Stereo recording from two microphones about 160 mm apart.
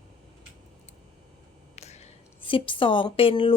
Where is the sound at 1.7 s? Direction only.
45° left (ahead or behind).